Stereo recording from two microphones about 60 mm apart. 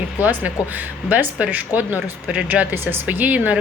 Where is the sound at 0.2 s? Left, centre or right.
Right.